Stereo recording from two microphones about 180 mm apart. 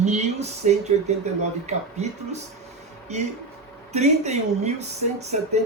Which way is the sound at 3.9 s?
40° right (ahead or behind).